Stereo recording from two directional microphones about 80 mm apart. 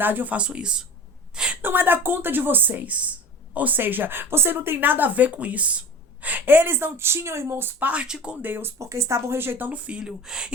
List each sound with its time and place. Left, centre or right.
0.0 s speech: right
1.6 s speech: right
7.8 s speech: right
8.4 s speech: right; by 10.5 s centre